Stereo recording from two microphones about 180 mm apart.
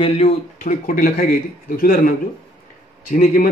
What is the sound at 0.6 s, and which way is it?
Speech, 45° left (ahead or behind).